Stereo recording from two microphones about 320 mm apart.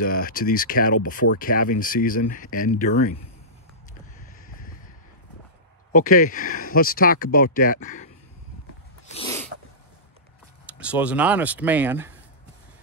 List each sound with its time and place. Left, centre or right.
0.0 s speech: left
4.5 s a sound: left
5.9 s speech: left
9.1 s sneeze: centre
10.8 s speech: centre